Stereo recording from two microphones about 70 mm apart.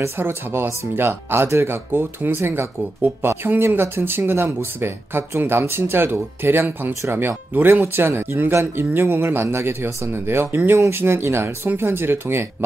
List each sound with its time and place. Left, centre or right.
0.0 s speech: right